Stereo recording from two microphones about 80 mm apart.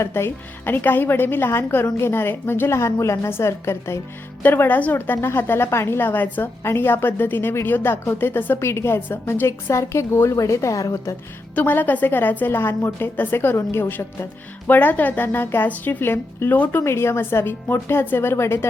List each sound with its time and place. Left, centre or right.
0.0 s a woman's voice: left
11.5 s a woman's voice: left